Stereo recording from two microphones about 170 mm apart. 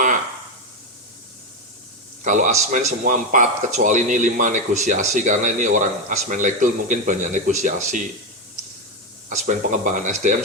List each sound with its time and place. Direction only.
2.2 s speech: 50° right (ahead or behind)
9.5 s speech: 45° right (ahead or behind)